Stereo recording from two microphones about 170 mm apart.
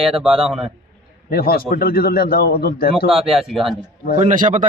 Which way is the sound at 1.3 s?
65° left (ahead or behind).